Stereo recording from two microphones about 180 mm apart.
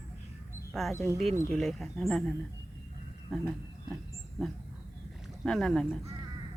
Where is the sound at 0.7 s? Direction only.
Centre (ahead or behind).